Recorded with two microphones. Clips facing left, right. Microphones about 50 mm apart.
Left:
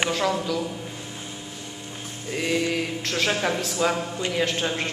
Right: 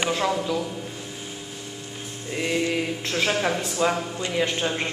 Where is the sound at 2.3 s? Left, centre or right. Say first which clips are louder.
Even; centre.